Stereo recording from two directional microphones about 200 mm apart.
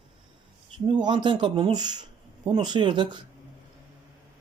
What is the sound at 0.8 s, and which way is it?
A man's voice, 25° right (ahead or behind).